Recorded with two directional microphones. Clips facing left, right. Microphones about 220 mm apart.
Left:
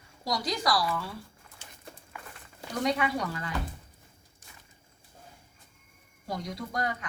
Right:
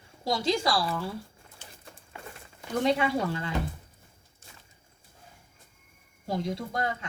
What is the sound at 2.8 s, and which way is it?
Speech, 25° right (ahead or behind).